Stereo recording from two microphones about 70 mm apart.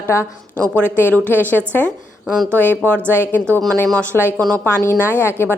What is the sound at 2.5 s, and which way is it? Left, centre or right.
Speech, left.